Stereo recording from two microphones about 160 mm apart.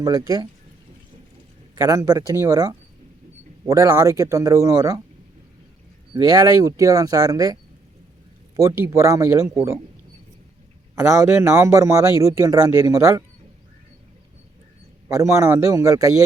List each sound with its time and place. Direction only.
0.0 s speech: 20° right (ahead or behind)
1.7 s speech: 20° right (ahead or behind)
6.1 s speech: 25° right (ahead or behind)
10.9 s a man's voice: 15° right (ahead or behind)
15.1 s speech: 15° right (ahead or behind)